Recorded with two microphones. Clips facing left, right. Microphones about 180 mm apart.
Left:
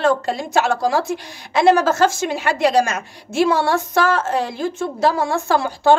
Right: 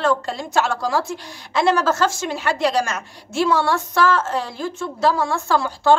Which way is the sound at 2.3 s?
15° left (ahead or behind).